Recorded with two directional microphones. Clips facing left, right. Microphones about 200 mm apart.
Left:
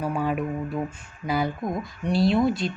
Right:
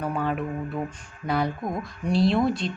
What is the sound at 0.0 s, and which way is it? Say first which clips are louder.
Speech: left 1 dB; 10° left (ahead or behind).